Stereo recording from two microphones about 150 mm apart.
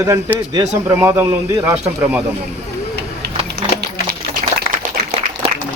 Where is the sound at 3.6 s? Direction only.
90° right.